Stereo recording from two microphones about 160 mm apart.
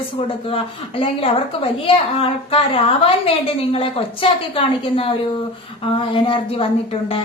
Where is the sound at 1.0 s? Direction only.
35° left (ahead or behind).